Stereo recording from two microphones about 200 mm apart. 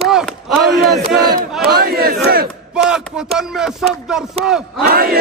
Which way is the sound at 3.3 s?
5° right (ahead or behind).